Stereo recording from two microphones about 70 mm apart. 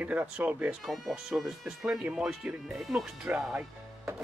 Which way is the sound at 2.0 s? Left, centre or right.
Centre.